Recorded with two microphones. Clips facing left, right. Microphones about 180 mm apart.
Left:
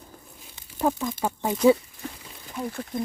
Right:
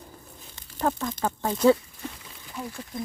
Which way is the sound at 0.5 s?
10° left (ahead or behind).